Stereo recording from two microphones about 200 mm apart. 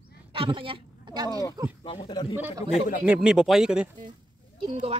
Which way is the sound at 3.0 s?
5° right (ahead or behind).